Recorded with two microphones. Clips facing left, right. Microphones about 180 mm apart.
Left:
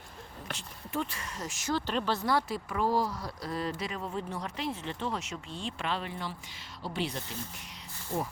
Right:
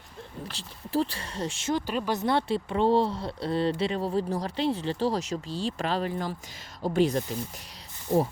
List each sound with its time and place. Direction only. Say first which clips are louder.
0.5 s speech: right 7 dB; 35° right (ahead or behind)
1.7 s speech: right 2 dB; 10° right (ahead or behind)
2.1 s speech: right 4 dB; 25° right (ahead or behind); by 7.2 s 45° right (ahead or behind)
8.1 s speech: right 10 dB; 20° right (ahead or behind)